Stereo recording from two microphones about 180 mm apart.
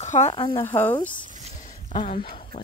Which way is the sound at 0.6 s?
10° left (ahead or behind).